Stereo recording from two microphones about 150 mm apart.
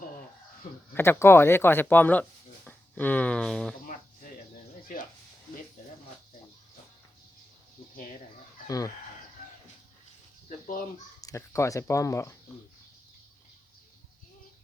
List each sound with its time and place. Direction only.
0.9 s speech: 15° left (ahead or behind)
8.6 s speech: 25° left (ahead or behind)
10.7 s speech: 65° left (ahead or behind)
11.2 s speech: 20° left (ahead or behind)